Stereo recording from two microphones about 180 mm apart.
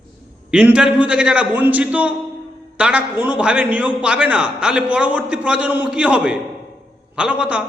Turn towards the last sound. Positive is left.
turn(degrees=-5)  # may be behind; listen again after turning